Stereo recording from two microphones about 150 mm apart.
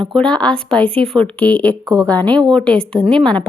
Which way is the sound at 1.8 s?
20° right (ahead or behind).